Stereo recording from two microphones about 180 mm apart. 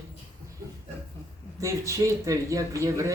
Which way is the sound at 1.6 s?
15° right (ahead or behind).